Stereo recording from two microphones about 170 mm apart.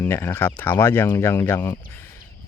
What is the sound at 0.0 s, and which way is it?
Speech, 15° left (ahead or behind).